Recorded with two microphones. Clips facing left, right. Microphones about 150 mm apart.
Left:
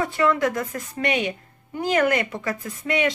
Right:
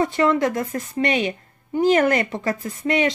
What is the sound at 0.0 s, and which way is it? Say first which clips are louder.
A woman's voice: right 2 dB; 25° right (ahead or behind).